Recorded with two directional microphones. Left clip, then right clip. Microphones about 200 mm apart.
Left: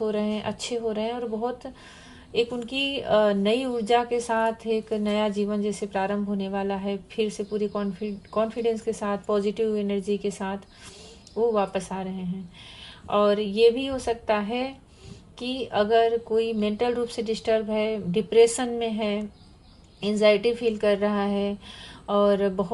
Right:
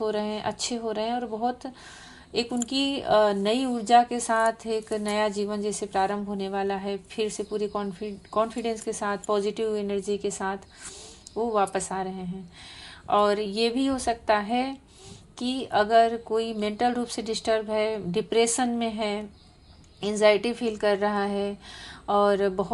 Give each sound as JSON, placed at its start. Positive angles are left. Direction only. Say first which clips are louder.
{"t": 0.0, "sound": "speech", "louder": "even", "side_deg": -35}